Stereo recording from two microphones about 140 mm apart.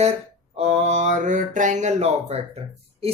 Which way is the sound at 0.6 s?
50° right (ahead or behind).